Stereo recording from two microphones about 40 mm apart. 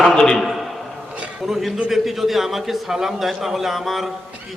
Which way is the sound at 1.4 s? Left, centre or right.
Centre.